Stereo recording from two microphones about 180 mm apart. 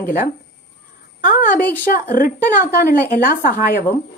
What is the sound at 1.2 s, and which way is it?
Speech, 45° left (ahead or behind).